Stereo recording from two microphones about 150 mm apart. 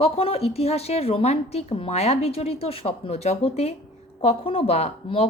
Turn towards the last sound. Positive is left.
turn(degrees=45)  # may be behind; listen again after turning